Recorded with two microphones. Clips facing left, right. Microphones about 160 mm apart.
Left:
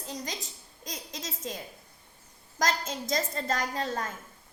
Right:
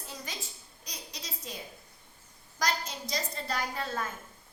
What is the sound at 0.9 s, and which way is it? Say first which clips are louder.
Speech: left 6 dB; 45° left (ahead or behind).